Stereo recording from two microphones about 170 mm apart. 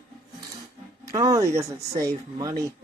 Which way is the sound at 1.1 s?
20° right (ahead or behind).